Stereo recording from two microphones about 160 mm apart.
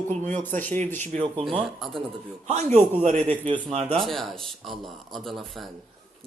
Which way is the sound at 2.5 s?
45° right (ahead or behind).